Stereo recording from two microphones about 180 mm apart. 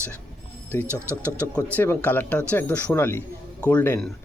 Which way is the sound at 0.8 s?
15° right (ahead or behind).